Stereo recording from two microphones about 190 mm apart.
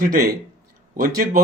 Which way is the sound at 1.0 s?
50° right (ahead or behind).